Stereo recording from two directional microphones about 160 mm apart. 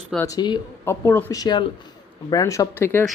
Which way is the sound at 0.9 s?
15° left (ahead or behind).